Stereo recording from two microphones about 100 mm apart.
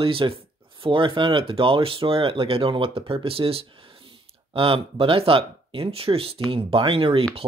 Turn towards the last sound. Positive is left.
turn(degrees=-65)  # may be behind; listen again after turning